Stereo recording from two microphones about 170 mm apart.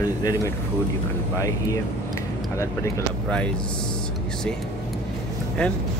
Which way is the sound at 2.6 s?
10° left (ahead or behind).